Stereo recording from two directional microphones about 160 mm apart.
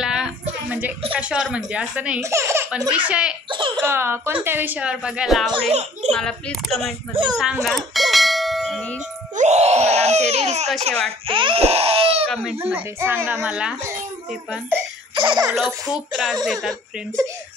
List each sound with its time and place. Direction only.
0.0 s a sound: 5° right (ahead or behind)
1.1 s a woman's voice: 5° right (ahead or behind)
2.2 s a woman's voice: 15° right (ahead or behind)
3.4 s speech: 30° right (ahead or behind)
3.8 s a woman's voice: 15° right (ahead or behind)
5.7 s a child's voice: 45° right (ahead or behind)
6.1 s a woman's voice: 5° left (ahead or behind)
7.6 s bell: centre (ahead or behind)
9.3 s music: 45° right (ahead or behind)
11.1 s speech: 30° right (ahead or behind)
12.5 s a woman's voice: 10° right (ahead or behind)
15.1 s speech: 30° right (ahead or behind)
15.9 s a woman's voice: 5° right (ahead or behind)